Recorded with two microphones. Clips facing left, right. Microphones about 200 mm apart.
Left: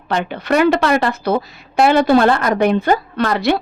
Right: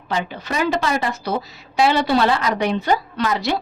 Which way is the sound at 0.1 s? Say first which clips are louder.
Left 7 dB; 65° left (ahead or behind).